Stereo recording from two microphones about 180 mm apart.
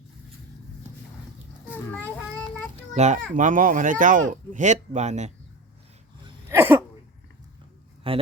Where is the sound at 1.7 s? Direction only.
10° left (ahead or behind).